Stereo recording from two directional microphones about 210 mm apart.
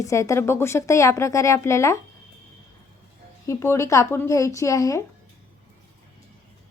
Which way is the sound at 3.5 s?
15° left (ahead or behind).